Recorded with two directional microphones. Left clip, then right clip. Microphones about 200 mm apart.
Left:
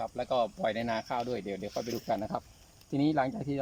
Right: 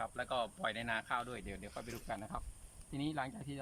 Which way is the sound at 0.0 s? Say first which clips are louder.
Left 8 dB; 35° left (ahead or behind).